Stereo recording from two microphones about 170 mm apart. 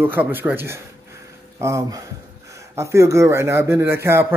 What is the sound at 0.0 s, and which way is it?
A man's voice, 10° right (ahead or behind).